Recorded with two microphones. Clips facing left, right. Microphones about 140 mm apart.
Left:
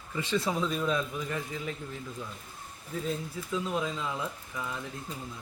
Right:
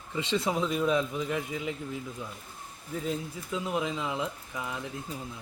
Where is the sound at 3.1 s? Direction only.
15° right (ahead or behind).